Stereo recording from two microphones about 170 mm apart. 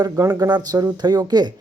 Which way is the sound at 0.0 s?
20° right (ahead or behind).